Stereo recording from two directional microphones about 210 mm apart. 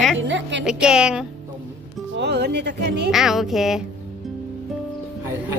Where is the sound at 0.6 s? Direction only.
5° right (ahead or behind).